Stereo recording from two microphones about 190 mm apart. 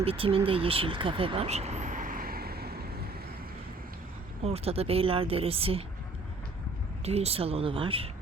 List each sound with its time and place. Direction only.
0.0 s speech: 30° right (ahead or behind); by 2.8 s 55° right (ahead or behind)
4.4 s speech: 30° right (ahead or behind)
7.0 s speech: 35° right (ahead or behind)